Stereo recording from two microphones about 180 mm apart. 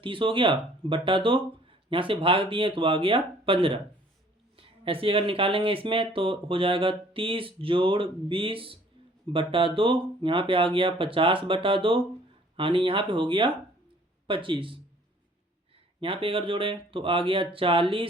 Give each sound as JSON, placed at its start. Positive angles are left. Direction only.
{"t": 0.0, "sound": "speech", "side_deg": -30}
{"t": 16.0, "sound": "speech", "side_deg": -30}